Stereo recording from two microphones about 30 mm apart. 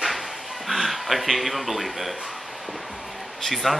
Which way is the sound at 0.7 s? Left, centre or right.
Centre.